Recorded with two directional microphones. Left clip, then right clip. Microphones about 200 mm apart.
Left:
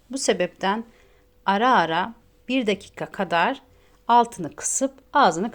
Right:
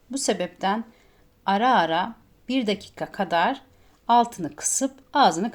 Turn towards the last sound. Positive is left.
turn(degrees=15)  # may be behind; listen again after turning